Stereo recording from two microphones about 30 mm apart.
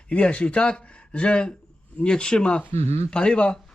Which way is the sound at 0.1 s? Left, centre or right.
Left.